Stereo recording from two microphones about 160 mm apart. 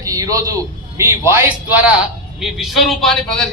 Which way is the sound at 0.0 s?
20° right (ahead or behind).